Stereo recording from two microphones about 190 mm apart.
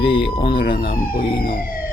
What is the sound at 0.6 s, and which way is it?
Speech, 50° left (ahead or behind).